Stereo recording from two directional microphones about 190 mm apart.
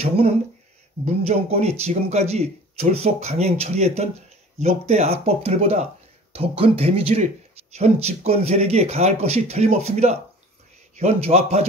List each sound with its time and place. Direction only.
1.0 s speech: 35° right (ahead or behind)